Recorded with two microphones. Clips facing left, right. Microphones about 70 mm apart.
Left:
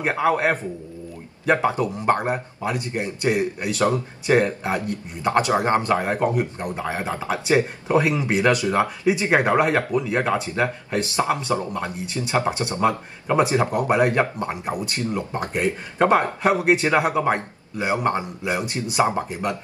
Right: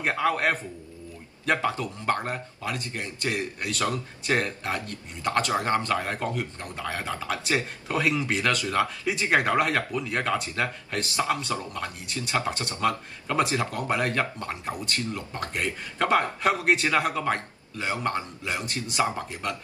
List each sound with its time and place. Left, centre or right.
0.0 s speech: centre